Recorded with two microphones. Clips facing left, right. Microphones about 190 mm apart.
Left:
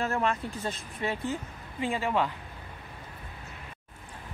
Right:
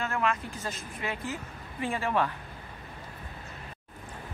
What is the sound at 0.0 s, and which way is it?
Speech, 35° left (ahead or behind).